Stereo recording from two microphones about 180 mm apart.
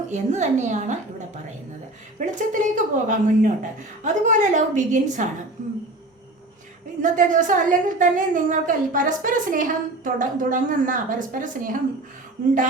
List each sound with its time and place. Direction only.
0.1 s a woman's voice: 40° right (ahead or behind)
2.1 s a woman's voice: 45° right (ahead or behind)
7.0 s a woman's voice: 45° right (ahead or behind)